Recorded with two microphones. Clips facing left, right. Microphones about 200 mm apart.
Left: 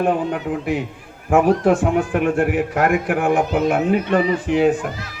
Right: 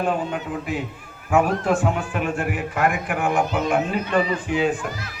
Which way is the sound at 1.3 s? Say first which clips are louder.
Left 5 dB; 55° left (ahead or behind).